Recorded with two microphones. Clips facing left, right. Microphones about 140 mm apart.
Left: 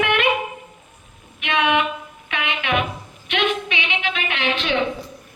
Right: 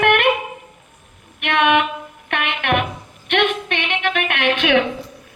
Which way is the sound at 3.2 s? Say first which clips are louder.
Right 3 dB; 60° right (ahead or behind).